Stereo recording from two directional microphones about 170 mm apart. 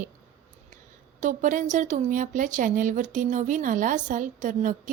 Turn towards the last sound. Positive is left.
turn(degrees=-50)  # may be behind; listen again after turning